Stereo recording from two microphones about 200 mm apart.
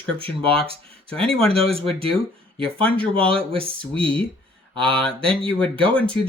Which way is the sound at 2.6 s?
5° left (ahead or behind).